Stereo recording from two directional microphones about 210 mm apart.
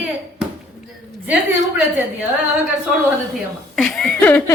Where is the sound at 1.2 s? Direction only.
5° right (ahead or behind).